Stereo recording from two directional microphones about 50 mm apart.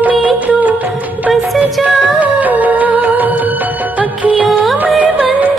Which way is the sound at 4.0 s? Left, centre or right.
Right.